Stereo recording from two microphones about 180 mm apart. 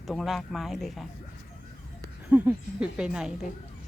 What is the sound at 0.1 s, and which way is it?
Speech, centre (ahead or behind).